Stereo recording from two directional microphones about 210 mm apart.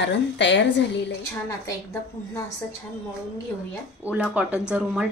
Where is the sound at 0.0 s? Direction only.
55° left (ahead or behind).